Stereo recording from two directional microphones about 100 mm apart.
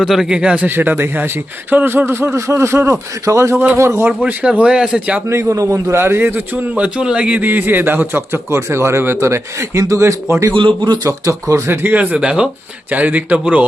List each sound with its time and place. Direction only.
0.0 s a man's voice: 5° right (ahead or behind)
5.3 s a man's voice: 30° right (ahead or behind)
10.8 s speech: 45° right (ahead or behind)
11.0 s a man's voice: 30° right (ahead or behind)
12.1 s a man's voice: 10° right (ahead or behind)